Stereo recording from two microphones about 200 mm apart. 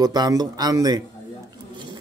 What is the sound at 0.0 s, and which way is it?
Speech, 20° right (ahead or behind).